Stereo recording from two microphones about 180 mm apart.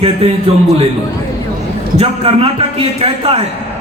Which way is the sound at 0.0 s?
35° right (ahead or behind).